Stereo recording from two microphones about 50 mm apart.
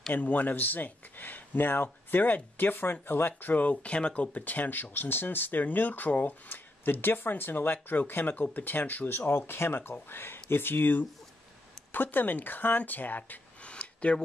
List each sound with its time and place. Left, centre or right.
0.1 s speech: left
3.7 s speech: left
13.6 s a sound: left